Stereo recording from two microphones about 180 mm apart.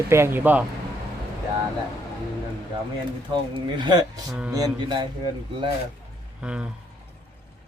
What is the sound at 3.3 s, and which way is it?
Speech, 25° right (ahead or behind).